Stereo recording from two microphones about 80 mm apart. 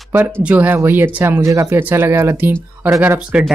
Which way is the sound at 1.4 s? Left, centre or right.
Right.